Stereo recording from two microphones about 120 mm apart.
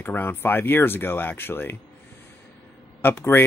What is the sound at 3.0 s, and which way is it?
Speech, 20° left (ahead or behind).